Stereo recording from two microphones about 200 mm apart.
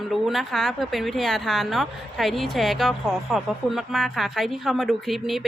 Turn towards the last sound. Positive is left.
turn(degrees=0)  # may be behind; listen again after turning